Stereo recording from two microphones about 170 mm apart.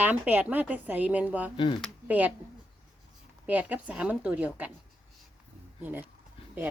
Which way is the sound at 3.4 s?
10° right (ahead or behind).